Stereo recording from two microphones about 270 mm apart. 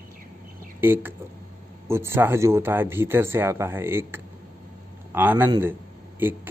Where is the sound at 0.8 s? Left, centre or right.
Centre.